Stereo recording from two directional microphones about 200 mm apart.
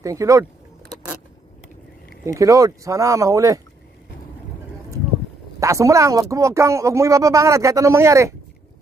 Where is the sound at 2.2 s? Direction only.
15° right (ahead or behind).